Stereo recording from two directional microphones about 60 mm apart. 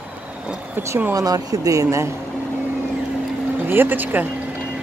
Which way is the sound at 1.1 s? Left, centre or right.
Right.